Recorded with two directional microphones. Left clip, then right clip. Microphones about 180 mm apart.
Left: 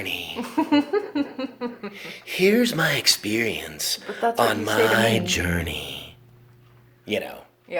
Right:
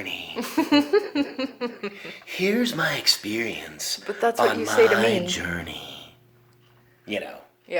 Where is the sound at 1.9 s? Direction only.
40° left (ahead or behind).